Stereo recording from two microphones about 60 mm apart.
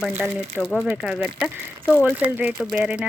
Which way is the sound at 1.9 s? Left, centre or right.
Left.